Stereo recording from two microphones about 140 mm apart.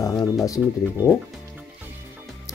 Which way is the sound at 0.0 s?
25° left (ahead or behind).